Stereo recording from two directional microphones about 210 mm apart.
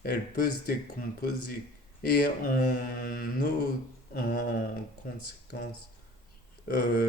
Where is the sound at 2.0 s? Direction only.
45° left (ahead or behind).